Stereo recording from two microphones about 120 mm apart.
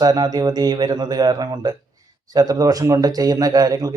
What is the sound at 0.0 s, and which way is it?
Speech, 35° right (ahead or behind).